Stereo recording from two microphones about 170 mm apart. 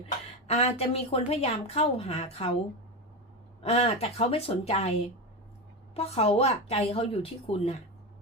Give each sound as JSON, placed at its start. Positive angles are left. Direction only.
{"t": 0.4, "sound": "a woman's voice", "side_deg": 35}
{"t": 3.6, "sound": "a woman's voice", "side_deg": 35}